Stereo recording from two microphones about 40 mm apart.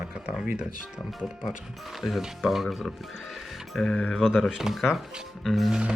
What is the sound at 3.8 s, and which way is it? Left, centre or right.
Speech, left.